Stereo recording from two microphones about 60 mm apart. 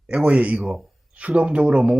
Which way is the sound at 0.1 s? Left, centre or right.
Right.